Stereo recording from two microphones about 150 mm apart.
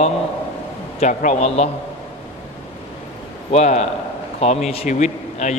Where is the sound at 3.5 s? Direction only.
50° left (ahead or behind).